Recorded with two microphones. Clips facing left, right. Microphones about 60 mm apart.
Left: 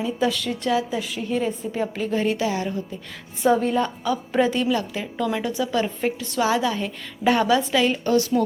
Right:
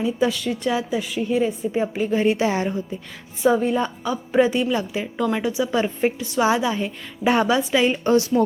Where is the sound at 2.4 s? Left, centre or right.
Right.